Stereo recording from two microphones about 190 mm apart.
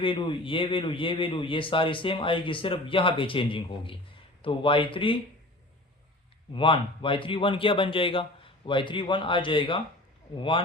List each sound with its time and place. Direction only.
0.0 s a man's voice: 25° left (ahead or behind)
6.5 s a man's voice: 25° left (ahead or behind)